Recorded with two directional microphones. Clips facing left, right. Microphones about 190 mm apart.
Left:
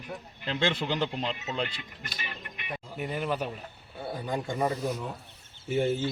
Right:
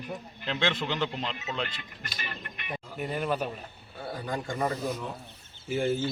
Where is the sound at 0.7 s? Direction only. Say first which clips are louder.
Left 1 dB; 10° left (ahead or behind).